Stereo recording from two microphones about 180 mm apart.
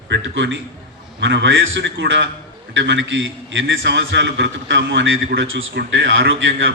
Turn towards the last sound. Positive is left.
turn(degrees=-90)